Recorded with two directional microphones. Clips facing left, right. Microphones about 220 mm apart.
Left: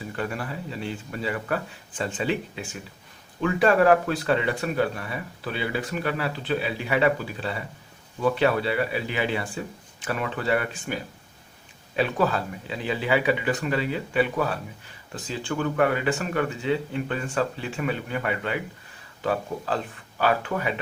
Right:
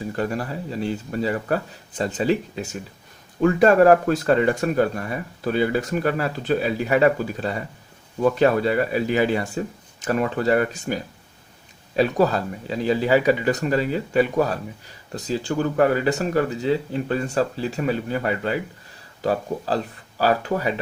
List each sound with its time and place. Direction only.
0.0 s speech: 40° right (ahead or behind)